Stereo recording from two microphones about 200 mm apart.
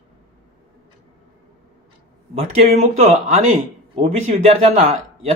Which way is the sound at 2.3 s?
30° right (ahead or behind).